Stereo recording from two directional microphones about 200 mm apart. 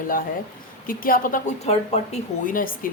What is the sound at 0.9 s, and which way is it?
Speech, 45° left (ahead or behind).